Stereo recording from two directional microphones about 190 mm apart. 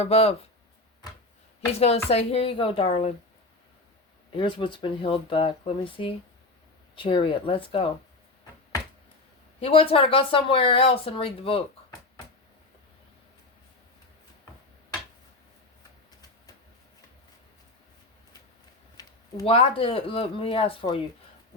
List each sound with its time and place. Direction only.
0.0 s a woman's voice: 35° left (ahead or behind)
1.8 s a woman's voice: 35° left (ahead or behind)
4.3 s speech: 25° left (ahead or behind)
9.6 s speech: 30° left (ahead or behind)
19.0 s a sound: 20° left (ahead or behind)
19.5 s speech: 30° left (ahead or behind)